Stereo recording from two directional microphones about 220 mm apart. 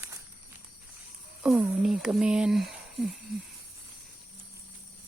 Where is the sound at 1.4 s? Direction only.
5° right (ahead or behind).